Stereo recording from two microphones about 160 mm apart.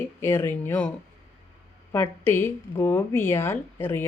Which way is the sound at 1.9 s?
15° left (ahead or behind).